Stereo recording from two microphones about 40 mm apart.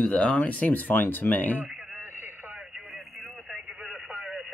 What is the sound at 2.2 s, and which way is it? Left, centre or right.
Radio, right.